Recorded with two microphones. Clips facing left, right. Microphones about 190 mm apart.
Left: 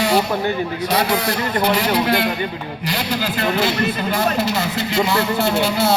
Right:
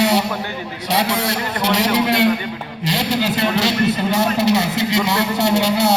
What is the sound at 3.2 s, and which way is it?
A man's voice, 75° right (ahead or behind).